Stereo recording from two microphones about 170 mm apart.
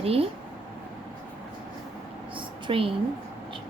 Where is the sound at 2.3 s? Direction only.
30° right (ahead or behind).